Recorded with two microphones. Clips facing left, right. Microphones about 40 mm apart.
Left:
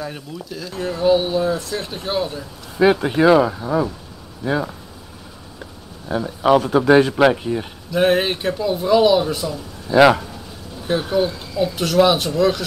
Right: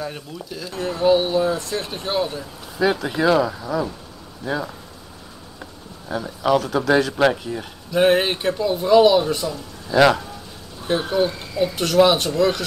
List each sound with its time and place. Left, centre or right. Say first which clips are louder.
0.0 s speech: left 1 dB; centre
2.8 s speech: left 5 dB; left
6.0 s speech: left 4 dB; centre
7.9 s speech: even; centre
9.8 s speech: left 3 dB; centre
10.9 s speech: left 1 dB; centre